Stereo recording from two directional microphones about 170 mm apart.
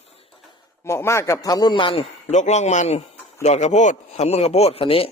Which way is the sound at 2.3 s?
45° left (ahead or behind).